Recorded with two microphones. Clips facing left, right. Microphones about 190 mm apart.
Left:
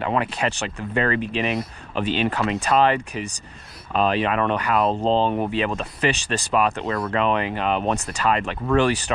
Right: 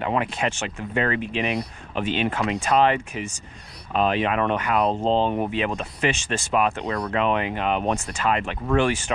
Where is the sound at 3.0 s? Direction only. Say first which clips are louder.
Left 1 dB; 35° left (ahead or behind).